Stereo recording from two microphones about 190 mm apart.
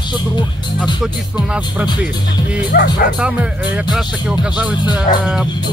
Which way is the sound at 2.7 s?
60° left (ahead or behind).